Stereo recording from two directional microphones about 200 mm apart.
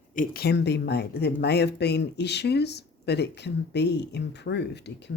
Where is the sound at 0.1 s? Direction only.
45° left (ahead or behind).